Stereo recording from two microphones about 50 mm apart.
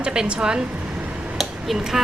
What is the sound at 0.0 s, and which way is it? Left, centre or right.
Speech, centre.